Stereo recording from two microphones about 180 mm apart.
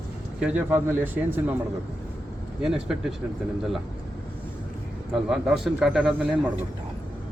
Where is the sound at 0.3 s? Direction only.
5° right (ahead or behind).